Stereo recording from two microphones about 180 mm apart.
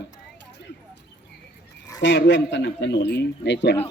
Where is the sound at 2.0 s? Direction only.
90° left; by 3.5 s 65° left (ahead or behind).